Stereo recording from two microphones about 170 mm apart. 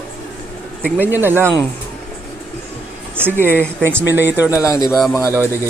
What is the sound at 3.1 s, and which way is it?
Speech, 10° right (ahead or behind).